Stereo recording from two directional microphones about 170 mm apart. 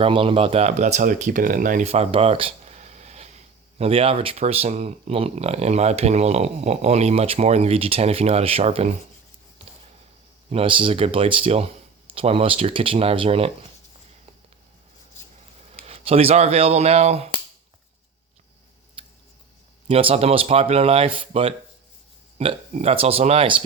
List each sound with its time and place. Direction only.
0.0 s speech: 30° right (ahead or behind)
10.5 s speech: 30° right (ahead or behind)
15.9 s speech: 35° right (ahead or behind)
19.0 s a sound: 30° right (ahead or behind)
19.9 s speech: 35° right (ahead or behind)